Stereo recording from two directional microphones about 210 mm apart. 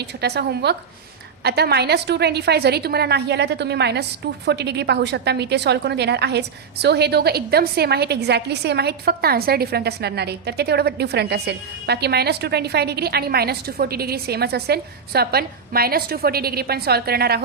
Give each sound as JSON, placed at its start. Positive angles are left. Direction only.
{"t": 0.0, "sound": "a woman's voice", "side_deg": -50}